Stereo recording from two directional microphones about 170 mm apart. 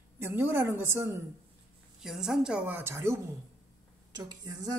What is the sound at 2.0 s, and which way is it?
A woman's voice, 5° right (ahead or behind).